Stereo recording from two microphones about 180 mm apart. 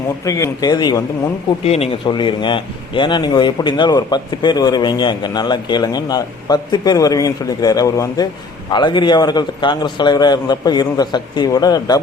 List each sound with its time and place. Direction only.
0.3 s speech: 15° left (ahead or behind)
1.6 s speech: 35° left (ahead or behind)